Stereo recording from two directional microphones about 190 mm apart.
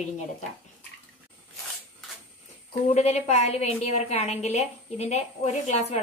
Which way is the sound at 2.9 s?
35° left (ahead or behind).